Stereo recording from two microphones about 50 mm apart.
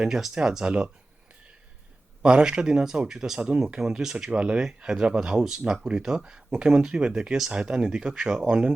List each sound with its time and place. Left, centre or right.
0.0 s speech: centre
2.2 s speech: centre